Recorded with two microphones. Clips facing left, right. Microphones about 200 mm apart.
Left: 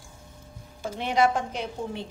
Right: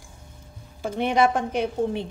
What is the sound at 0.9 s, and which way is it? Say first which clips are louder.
Speech: right 3 dB; 60° right (ahead or behind).